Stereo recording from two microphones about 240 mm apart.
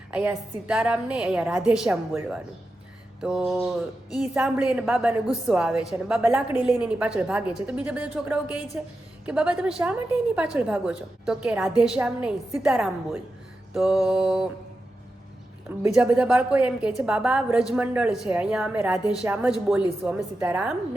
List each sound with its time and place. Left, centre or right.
0.1 s speech: centre
15.8 s speech: centre